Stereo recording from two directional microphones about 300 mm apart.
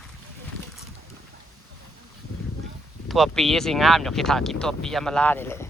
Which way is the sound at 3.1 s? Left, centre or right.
Centre.